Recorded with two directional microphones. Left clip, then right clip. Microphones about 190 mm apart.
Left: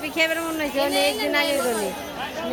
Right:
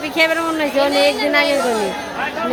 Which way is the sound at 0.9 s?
30° left (ahead or behind).